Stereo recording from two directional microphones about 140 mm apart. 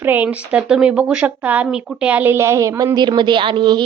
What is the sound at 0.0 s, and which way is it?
A woman's voice, 10° right (ahead or behind).